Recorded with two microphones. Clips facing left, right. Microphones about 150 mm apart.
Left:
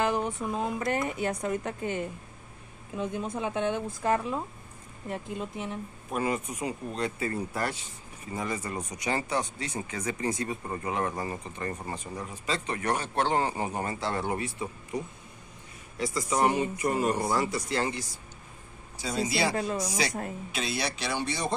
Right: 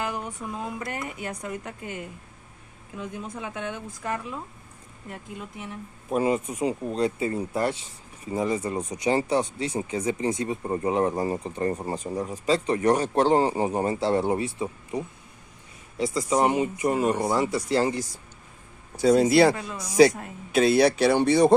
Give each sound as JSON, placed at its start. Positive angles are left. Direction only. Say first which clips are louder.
{"t": 0.0, "sound": "speech", "louder": "left 4 dB", "side_deg": 25}
{"t": 6.1, "sound": "speech", "louder": "right 6 dB", "side_deg": -25}
{"t": 18.9, "sound": "speech", "louder": "right 12 dB", "side_deg": -55}
{"t": 19.5, "sound": "speech", "louder": "left 5 dB", "side_deg": 40}
{"t": 20.5, "sound": "speech", "louder": "right 15 dB", "side_deg": -50}